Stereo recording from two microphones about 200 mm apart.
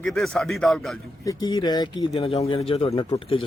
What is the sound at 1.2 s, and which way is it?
Speech, 20° left (ahead or behind).